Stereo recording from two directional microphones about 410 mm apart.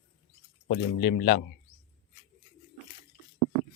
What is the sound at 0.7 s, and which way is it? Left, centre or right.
Speech, left.